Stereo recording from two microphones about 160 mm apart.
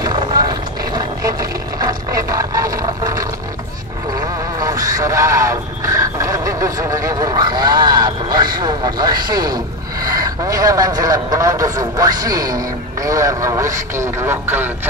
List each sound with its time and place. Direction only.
0.0 s vehicle: 25° right (ahead or behind)
4.1 s radio: 20° right (ahead or behind)
10.0 s a man's voice: 20° right (ahead or behind)